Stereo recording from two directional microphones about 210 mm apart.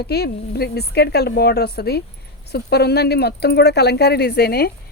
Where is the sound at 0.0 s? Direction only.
50° left (ahead or behind).